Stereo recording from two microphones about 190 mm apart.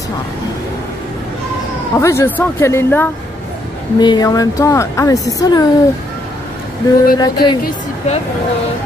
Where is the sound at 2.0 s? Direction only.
15° left (ahead or behind).